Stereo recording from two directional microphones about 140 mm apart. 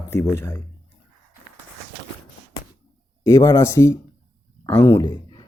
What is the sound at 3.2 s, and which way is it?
Speech, 20° left (ahead or behind).